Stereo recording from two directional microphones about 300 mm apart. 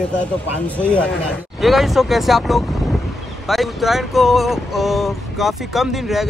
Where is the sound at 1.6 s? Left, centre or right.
Centre.